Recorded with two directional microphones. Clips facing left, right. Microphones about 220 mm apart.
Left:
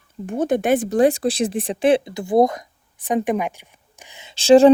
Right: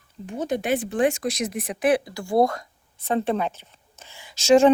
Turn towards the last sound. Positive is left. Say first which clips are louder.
# left 5 dB
turn(degrees=35)  # may be behind; listen again after turning